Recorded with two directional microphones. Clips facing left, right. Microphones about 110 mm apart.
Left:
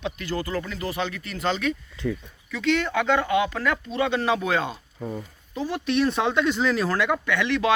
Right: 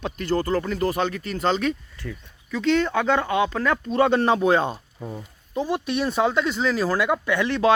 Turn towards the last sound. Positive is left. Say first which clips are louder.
# right 3 dB
turn(degrees=-30)  # may be behind; listen again after turning